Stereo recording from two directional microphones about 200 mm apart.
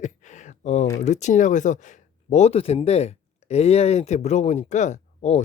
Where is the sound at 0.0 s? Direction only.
35° left (ahead or behind).